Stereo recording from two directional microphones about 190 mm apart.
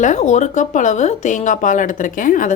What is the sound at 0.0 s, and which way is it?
Speech, 40° left (ahead or behind).